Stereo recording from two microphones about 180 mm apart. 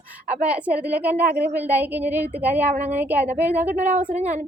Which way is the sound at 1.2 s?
60° right (ahead or behind).